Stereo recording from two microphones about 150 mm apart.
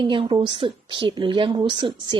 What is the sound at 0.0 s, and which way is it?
A woman's voice, 35° right (ahead or behind).